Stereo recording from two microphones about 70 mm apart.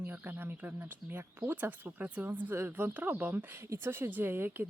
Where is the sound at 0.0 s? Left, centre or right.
Right.